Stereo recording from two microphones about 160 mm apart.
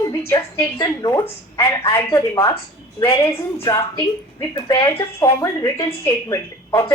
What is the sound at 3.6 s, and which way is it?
A woman's voice, 20° left (ahead or behind).